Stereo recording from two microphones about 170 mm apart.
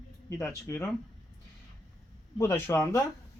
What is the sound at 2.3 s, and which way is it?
Speech, 15° left (ahead or behind).